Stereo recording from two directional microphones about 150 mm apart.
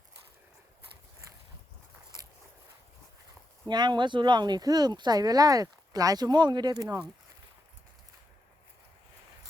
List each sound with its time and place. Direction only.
3.7 s speech: 30° right (ahead or behind)